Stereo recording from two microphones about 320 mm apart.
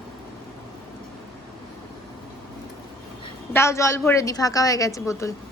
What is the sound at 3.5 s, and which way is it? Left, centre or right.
A woman's voice, centre.